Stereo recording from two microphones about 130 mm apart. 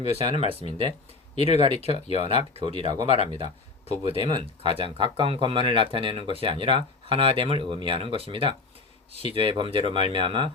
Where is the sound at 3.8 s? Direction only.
50° left (ahead or behind).